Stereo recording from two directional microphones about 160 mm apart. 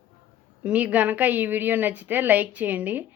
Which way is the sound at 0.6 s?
10° right (ahead or behind).